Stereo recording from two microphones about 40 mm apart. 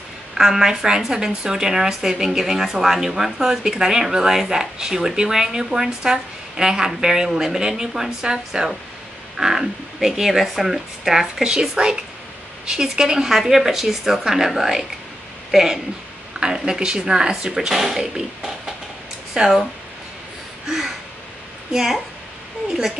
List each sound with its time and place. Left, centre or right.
0.3 s a woman's voice: centre
9.4 s a woman's voice: centre
16.3 s a woman's voice: centre
18.0 s a woman's voice: centre
20.6 s a sound: centre
21.7 s speech: centre